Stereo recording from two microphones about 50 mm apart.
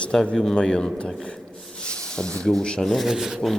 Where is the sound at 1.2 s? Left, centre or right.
Centre.